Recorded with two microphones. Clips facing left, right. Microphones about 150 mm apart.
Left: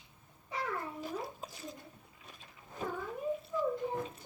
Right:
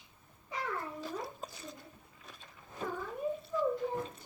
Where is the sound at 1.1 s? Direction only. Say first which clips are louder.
Even; centre (ahead or behind).